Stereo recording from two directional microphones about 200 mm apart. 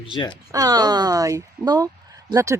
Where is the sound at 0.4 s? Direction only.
20° right (ahead or behind).